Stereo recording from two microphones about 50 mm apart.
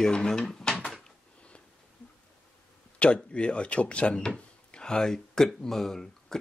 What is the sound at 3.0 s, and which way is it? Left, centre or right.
Speech, left.